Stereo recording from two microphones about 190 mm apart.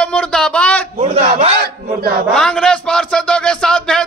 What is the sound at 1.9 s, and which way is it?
Speech, 55° right (ahead or behind).